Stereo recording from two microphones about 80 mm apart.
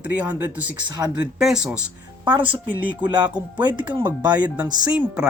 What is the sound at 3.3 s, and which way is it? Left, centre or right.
Speech, centre.